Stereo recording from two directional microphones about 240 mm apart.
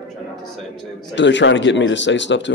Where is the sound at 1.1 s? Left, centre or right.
Left.